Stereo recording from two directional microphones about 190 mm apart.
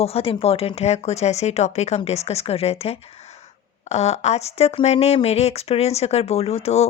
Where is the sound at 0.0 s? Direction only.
30° left (ahead or behind).